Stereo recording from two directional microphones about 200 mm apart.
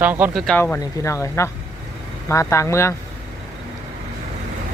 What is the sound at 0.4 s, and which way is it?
Speech, 10° left (ahead or behind).